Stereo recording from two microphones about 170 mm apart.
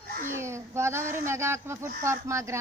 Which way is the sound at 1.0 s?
50° right (ahead or behind).